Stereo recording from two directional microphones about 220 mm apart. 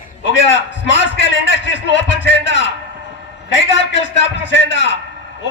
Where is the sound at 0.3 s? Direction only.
55° left (ahead or behind).